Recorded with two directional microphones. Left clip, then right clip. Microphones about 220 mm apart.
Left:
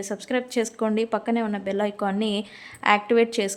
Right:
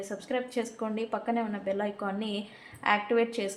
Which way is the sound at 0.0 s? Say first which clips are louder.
Left 5 dB; 50° left (ahead or behind).